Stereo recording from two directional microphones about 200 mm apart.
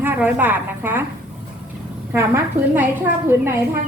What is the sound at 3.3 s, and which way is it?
Speech, 10° right (ahead or behind).